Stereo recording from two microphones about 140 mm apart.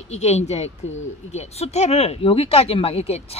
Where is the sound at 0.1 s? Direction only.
50° left (ahead or behind).